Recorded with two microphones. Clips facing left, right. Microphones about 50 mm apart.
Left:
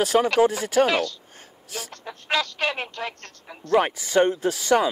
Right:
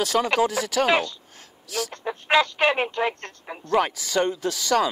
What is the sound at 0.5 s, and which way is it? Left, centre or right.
Speech, right.